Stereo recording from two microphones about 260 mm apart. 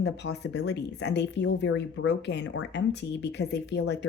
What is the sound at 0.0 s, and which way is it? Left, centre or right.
Speech, left.